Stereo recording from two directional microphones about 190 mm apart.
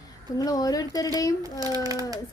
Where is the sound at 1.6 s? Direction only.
20° right (ahead or behind).